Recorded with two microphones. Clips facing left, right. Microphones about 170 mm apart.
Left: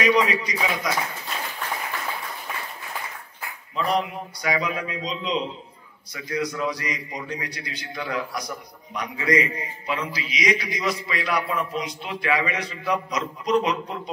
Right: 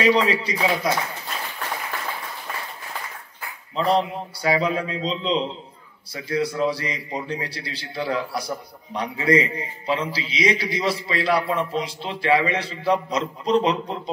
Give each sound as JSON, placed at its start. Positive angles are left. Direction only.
{"t": 0.0, "sound": "a man's voice", "side_deg": -30}
{"t": 3.7, "sound": "a man's voice", "side_deg": -30}